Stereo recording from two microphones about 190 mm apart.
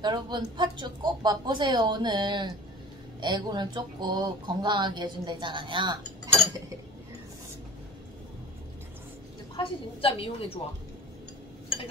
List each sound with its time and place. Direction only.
0.0 s speech: 25° right (ahead or behind)
9.6 s a woman's voice: 30° left (ahead or behind)